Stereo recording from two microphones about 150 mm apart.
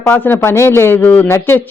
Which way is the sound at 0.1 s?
15° left (ahead or behind).